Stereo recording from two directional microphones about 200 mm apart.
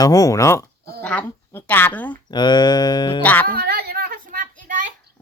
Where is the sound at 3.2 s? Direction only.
10° left (ahead or behind).